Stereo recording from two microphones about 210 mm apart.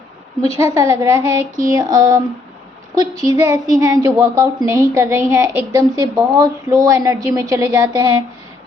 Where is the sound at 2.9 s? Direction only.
15° right (ahead or behind).